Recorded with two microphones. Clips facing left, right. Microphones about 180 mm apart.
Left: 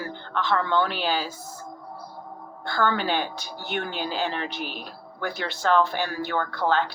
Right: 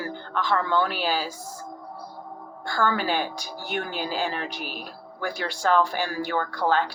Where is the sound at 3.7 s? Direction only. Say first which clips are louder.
Even; 45° right (ahead or behind).